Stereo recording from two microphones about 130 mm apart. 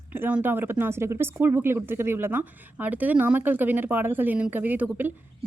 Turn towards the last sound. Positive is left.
turn(degrees=-15)  # may be behind; listen again after turning